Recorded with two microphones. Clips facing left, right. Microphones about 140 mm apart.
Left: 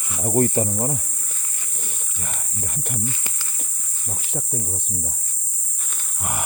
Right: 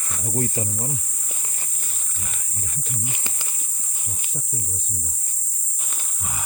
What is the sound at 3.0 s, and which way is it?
Speech, 20° right (ahead or behind).